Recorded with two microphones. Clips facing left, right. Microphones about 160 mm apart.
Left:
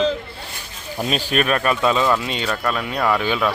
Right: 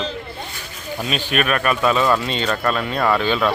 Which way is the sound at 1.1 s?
35° left (ahead or behind).